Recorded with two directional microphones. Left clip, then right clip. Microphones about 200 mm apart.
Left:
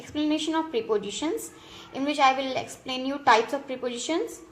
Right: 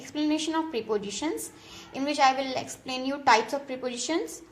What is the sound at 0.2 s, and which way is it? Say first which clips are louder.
A woman's voice: left 1 dB; 20° right (ahead or behind).